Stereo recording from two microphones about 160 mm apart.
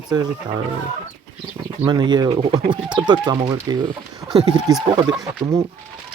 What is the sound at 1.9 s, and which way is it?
Speech, 25° right (ahead or behind).